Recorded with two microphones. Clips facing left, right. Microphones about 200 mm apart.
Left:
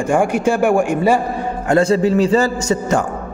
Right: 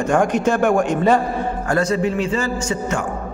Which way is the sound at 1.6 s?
25° left (ahead or behind).